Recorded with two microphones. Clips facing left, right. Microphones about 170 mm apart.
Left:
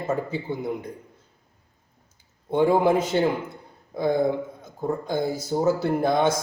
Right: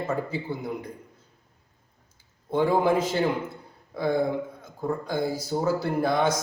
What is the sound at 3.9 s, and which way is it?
A man's voice, 20° left (ahead or behind).